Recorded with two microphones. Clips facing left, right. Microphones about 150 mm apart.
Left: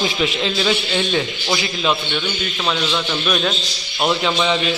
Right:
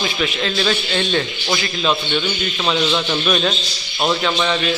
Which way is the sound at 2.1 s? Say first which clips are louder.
Right 2 dB; 5° right (ahead or behind).